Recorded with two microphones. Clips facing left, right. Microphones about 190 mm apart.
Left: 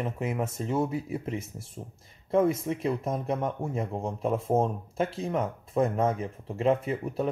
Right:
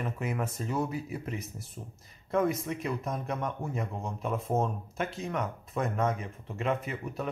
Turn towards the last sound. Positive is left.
turn(degrees=30)  # may be behind; listen again after turning